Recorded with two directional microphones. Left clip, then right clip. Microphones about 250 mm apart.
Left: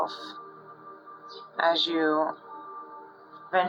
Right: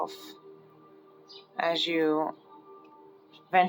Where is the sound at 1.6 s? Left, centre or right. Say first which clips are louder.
Left 4 dB; right.